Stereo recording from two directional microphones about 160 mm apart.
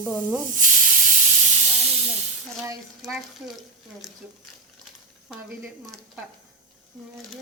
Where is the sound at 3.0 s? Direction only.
Centre (ahead or behind).